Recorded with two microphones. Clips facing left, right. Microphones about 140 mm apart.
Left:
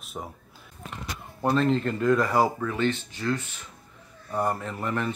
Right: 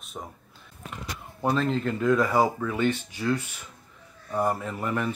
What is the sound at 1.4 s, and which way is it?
Speech, centre (ahead or behind).